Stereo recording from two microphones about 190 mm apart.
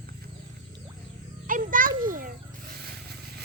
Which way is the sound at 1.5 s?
45° right (ahead or behind).